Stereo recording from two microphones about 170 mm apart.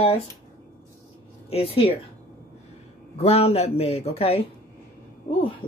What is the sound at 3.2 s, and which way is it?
Speech, 35° left (ahead or behind).